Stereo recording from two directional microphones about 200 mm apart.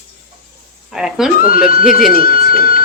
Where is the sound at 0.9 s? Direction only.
Centre (ahead or behind).